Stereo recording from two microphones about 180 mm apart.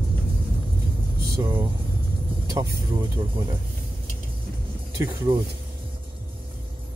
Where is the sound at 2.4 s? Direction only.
20° right (ahead or behind).